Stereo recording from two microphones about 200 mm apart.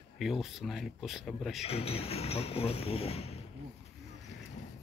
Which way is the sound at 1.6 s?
30° left (ahead or behind).